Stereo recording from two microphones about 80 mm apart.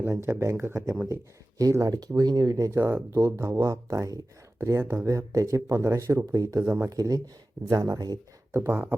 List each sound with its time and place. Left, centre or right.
0.0 s speech: right
1.0 s speech: right
1.8 s speech: right
6.7 s speech: right
6.9 s speech: right
8.5 s speech: right